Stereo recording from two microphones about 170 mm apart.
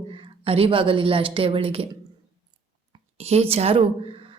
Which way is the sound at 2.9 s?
35° right (ahead or behind).